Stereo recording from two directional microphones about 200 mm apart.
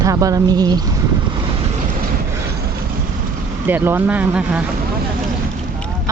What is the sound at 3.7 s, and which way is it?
Speech, 10° right (ahead or behind).